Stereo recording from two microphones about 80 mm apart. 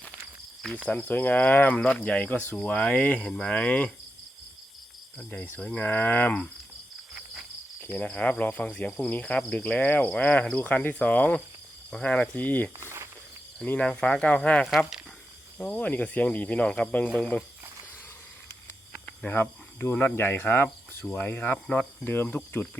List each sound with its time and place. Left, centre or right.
0.9 s speech: centre
5.1 s speech: centre
7.1 s cricket: centre
7.9 s speech: centre
12.8 s snake: right
13.7 s speech: centre
18.9 s snake: centre
19.4 s speech: left